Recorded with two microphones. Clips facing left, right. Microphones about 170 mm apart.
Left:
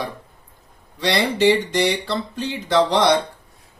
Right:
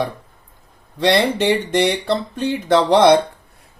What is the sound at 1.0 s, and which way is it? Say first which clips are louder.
Speech: right 3 dB; 55° right (ahead or behind).